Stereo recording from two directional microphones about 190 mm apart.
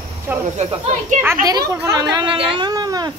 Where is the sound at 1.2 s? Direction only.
15° right (ahead or behind).